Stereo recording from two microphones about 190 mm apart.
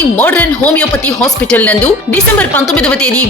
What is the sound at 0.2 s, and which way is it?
Speech, 10° left (ahead or behind).